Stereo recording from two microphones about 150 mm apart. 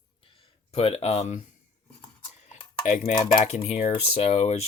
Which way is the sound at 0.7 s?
40° left (ahead or behind).